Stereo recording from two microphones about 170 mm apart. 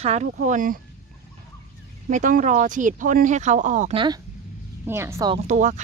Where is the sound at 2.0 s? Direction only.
50° right (ahead or behind).